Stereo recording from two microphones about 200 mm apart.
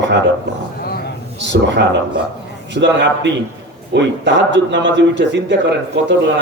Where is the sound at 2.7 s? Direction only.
60° right (ahead or behind).